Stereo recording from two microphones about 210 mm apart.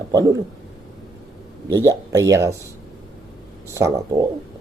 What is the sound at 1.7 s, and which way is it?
Speech, 15° right (ahead or behind).